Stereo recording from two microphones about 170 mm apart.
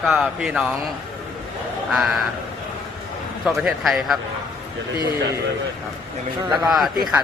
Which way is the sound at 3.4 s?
Centre (ahead or behind).